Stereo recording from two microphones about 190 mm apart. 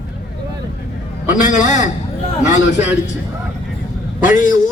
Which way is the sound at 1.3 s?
40° left (ahead or behind).